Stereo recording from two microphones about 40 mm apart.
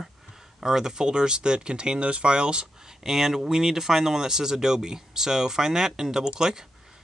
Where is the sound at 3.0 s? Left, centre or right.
Centre.